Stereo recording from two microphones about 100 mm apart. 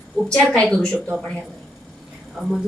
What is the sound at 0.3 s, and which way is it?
Speech, 10° left (ahead or behind).